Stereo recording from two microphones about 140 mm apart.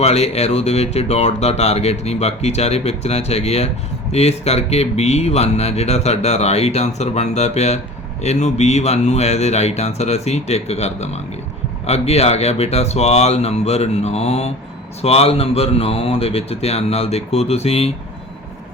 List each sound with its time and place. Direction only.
0.0 s speech: 50° left (ahead or behind)